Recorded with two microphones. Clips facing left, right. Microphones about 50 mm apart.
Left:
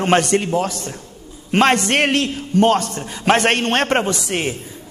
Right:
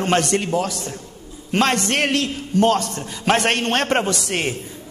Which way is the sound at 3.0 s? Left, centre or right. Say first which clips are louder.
Left 3 dB; centre.